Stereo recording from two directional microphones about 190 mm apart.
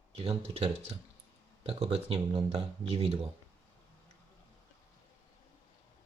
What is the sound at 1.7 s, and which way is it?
Speech, 35° right (ahead or behind).